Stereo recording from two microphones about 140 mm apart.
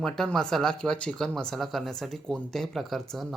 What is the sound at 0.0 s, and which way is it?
Speech, 5° left (ahead or behind).